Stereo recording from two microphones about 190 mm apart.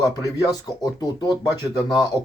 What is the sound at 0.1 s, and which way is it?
Speech, 20° left (ahead or behind).